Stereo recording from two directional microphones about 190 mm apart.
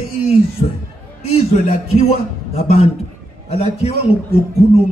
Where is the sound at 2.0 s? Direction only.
35° left (ahead or behind).